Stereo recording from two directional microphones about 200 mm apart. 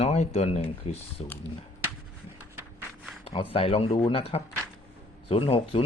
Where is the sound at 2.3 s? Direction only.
10° right (ahead or behind).